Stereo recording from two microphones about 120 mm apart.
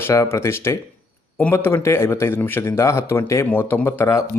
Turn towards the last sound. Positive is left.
turn(degrees=20)  # may be behind; listen again after turning